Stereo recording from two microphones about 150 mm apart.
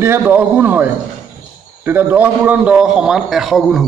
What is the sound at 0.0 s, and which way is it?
Speech, 15° right (ahead or behind).